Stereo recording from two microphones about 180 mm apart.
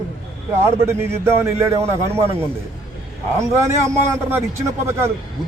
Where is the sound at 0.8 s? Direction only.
15° right (ahead or behind).